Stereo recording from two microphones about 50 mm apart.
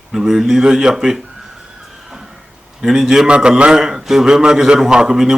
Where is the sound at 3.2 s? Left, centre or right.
Centre.